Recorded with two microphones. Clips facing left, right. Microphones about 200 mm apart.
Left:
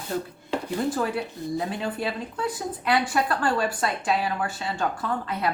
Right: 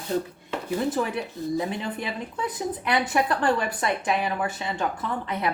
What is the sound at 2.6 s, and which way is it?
A woman's voice, 20° right (ahead or behind).